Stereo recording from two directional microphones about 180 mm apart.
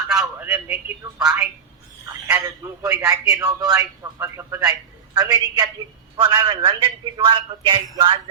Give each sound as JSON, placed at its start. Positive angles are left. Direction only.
{"t": 0.1, "sound": "telephone", "side_deg": -5}
{"t": 2.2, "sound": "a man's voice", "side_deg": -15}